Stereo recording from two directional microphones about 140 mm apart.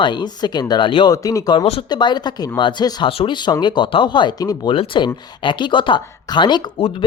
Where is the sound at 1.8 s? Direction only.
30° left (ahead or behind).